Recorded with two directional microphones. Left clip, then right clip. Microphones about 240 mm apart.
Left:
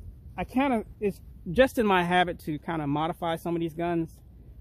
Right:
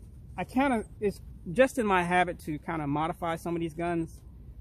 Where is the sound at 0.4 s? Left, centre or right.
Left.